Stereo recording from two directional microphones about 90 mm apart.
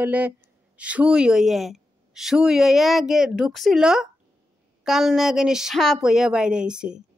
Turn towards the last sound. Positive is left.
turn(degrees=-10)  # may be behind; listen again after turning